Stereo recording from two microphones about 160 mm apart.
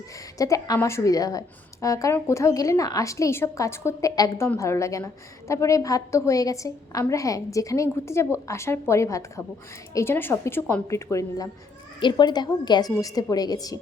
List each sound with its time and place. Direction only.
0.3 s a woman's voice: 20° left (ahead or behind)